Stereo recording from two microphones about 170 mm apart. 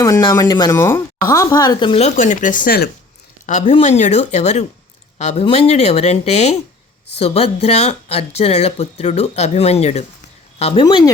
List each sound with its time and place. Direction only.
0.0 s speech: 20° left (ahead or behind); by 2.9 s 60° left (ahead or behind)
3.7 s speech: 40° left (ahead or behind)
10.8 s speech: 25° left (ahead or behind)